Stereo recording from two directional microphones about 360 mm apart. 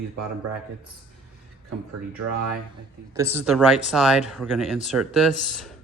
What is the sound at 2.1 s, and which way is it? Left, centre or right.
Speech, right.